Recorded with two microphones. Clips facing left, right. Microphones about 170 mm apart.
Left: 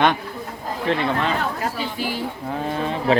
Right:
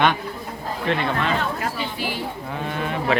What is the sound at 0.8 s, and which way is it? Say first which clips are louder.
A man's voice: left 2 dB; 35° left (ahead or behind).